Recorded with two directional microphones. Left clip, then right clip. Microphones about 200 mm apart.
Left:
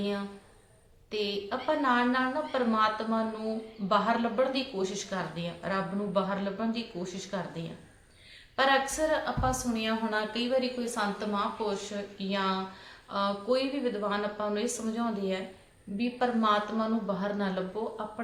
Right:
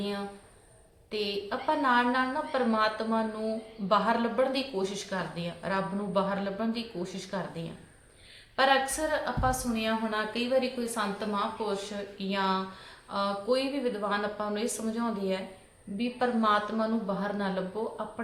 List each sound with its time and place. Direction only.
0.0 s a woman's voice: 5° right (ahead or behind)